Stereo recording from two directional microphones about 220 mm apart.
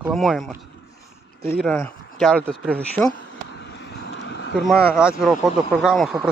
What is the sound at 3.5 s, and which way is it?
Vehicle, 50° left (ahead or behind).